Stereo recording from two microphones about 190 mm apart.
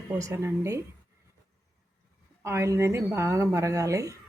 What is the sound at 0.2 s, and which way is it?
Speech, 15° right (ahead or behind).